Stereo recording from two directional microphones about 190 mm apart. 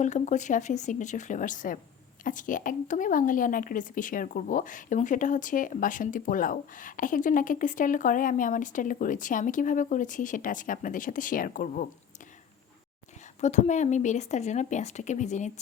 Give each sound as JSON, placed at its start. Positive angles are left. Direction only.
{"t": 0.0, "sound": "a woman's voice", "side_deg": 40}
{"t": 13.4, "sound": "a woman's voice", "side_deg": 40}